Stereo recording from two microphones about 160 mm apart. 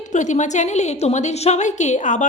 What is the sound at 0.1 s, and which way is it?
A woman's voice, 50° left (ahead or behind).